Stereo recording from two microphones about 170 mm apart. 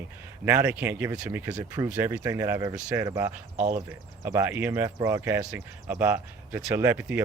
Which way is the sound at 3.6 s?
50° right (ahead or behind).